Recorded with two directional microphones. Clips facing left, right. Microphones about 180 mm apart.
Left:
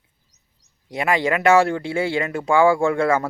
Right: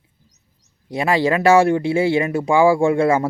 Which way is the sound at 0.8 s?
30° right (ahead or behind).